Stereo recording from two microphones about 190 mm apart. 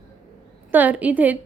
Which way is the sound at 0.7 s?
10° right (ahead or behind).